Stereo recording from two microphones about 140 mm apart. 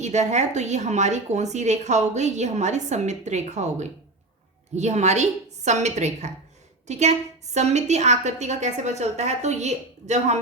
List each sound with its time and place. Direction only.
0.0 s a woman's voice: 55° right (ahead or behind)